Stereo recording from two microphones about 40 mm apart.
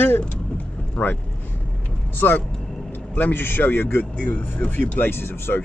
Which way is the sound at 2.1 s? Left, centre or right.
Left.